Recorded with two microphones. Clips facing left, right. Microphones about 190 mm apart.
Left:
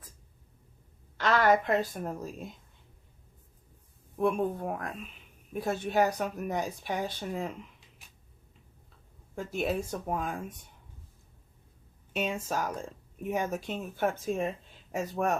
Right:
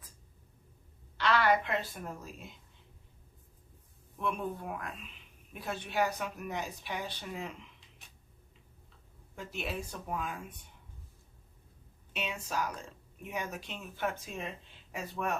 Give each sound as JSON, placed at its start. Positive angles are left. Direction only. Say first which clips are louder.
{"t": 1.2, "sound": "a woman's voice", "louder": "left 3 dB", "side_deg": 45}
{"t": 4.2, "sound": "a woman's voice", "louder": "left 8 dB", "side_deg": 45}
{"t": 9.3, "sound": "a woman's voice", "louder": "left 8 dB", "side_deg": 45}
{"t": 12.1, "sound": "a woman's voice", "louder": "left 5 dB", "side_deg": 45}